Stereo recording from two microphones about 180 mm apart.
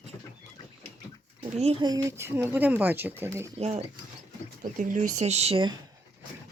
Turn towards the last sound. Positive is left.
turn(degrees=-30)  # may be behind; listen again after turning